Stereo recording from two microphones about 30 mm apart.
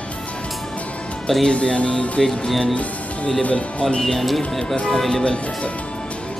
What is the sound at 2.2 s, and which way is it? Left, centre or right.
Speech, centre.